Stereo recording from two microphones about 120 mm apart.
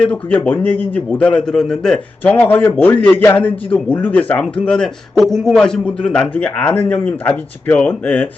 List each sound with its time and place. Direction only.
0.0 s a man's voice: 10° left (ahead or behind)